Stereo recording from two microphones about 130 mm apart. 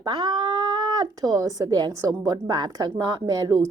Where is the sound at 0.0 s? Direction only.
30° right (ahead or behind).